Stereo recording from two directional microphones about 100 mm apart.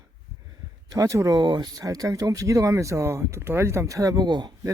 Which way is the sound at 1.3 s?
45° right (ahead or behind).